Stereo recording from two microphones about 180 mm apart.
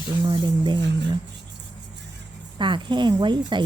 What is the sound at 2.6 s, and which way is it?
Speech, 25° right (ahead or behind).